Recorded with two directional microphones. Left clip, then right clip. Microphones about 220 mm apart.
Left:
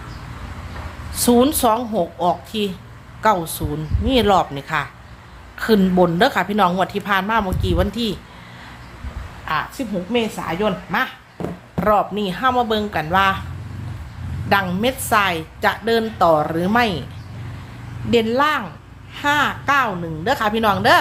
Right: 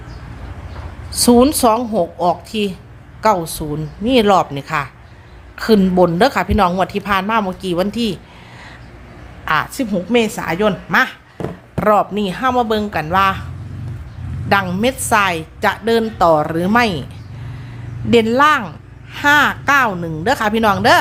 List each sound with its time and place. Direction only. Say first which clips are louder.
1.2 s a woman's voice: right 4 dB; 15° right (ahead or behind)
9.5 s speech: right 5 dB; 30° right (ahead or behind)
11.7 s a woman's voice: right 3 dB; 25° right (ahead or behind)
14.5 s a woman's voice: right 3 dB; 15° right (ahead or behind)
18.1 s a woman's voice: right 5 dB; 25° right (ahead or behind)